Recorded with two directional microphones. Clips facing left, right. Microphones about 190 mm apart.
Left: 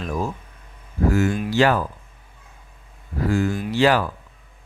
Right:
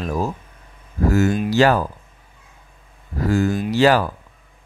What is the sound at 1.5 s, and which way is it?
Speech, 40° right (ahead or behind).